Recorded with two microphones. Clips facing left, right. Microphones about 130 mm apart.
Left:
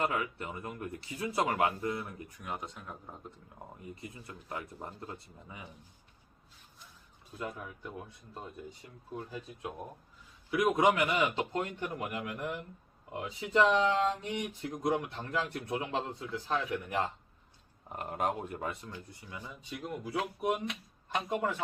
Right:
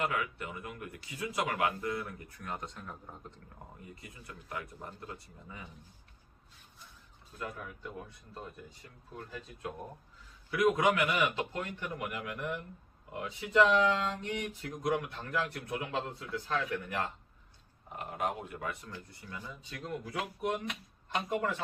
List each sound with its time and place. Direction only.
0.0 s speech: 25° left (ahead or behind)
2.5 s speech: 5° left (ahead or behind)
4.3 s speech: 25° left (ahead or behind)
7.3 s speech: 15° left (ahead or behind)
17.9 s speech: 40° left (ahead or behind)
18.7 s speech: 25° left (ahead or behind)